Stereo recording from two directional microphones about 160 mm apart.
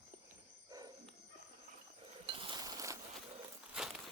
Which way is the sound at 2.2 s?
35° right (ahead or behind).